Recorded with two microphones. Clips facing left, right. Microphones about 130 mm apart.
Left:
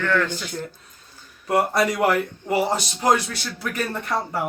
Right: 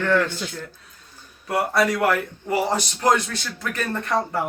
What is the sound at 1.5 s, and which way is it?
Speech, 20° left (ahead or behind).